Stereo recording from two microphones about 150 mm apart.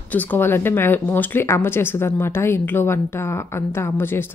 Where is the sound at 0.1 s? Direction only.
15° left (ahead or behind).